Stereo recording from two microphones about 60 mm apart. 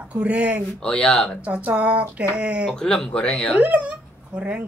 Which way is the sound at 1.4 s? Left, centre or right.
Right.